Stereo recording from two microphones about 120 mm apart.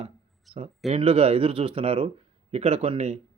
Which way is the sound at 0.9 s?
55° right (ahead or behind).